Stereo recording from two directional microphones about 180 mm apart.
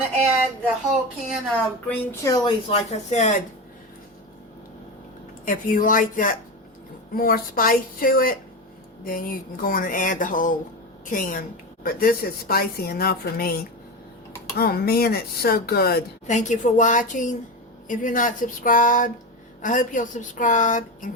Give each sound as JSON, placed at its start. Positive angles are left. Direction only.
{"t": 1.3, "sound": "speech", "side_deg": 0}
{"t": 2.2, "sound": "speech", "side_deg": 20}
{"t": 2.6, "sound": "speech", "side_deg": 35}
{"t": 5.5, "sound": "a woman's voice", "side_deg": 50}
{"t": 16.2, "sound": "speech", "side_deg": 40}